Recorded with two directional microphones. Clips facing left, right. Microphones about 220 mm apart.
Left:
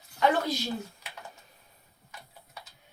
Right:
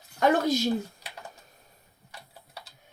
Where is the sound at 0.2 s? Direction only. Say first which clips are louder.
Right 4 dB; 45° right (ahead or behind).